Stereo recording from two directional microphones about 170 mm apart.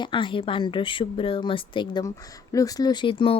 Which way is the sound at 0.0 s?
30° left (ahead or behind).